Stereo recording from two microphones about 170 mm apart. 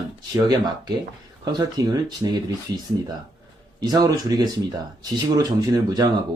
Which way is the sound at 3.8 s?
25° right (ahead or behind).